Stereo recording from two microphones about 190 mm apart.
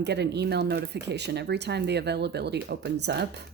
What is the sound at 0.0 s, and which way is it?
A woman's voice, 60° right (ahead or behind).